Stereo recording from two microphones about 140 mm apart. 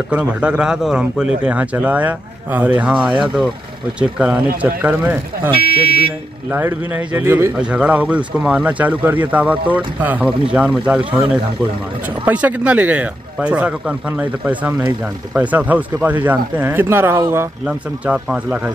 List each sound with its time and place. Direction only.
0.1 s a man's voice: 10° right (ahead or behind)
5.5 s speech: 40° right (ahead or behind)
6.5 s a man's voice: 15° right (ahead or behind)
17.6 s a man's voice: 5° right (ahead or behind)